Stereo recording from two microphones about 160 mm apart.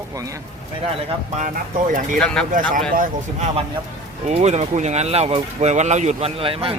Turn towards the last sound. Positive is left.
turn(degrees=-35)  # may be behind; listen again after turning